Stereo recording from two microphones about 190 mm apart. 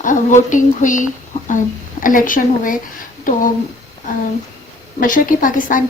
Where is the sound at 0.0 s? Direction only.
40° left (ahead or behind).